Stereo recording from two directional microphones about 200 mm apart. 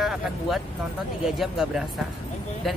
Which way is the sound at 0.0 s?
Centre (ahead or behind).